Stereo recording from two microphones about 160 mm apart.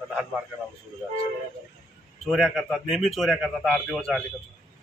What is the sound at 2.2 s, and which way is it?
A man's voice, centre (ahead or behind).